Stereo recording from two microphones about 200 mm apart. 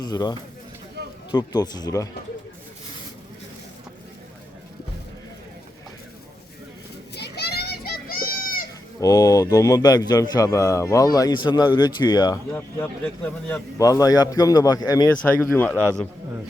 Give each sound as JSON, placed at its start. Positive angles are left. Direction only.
{"t": 0.0, "sound": "speech", "side_deg": 20}
{"t": 7.2, "sound": "children playing", "side_deg": 55}
{"t": 9.0, "sound": "a man's voice", "side_deg": 15}
{"t": 15.2, "sound": "a man's voice", "side_deg": 5}